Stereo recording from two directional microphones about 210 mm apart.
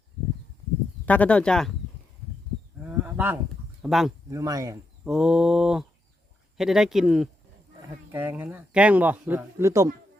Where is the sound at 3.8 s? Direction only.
Centre (ahead or behind).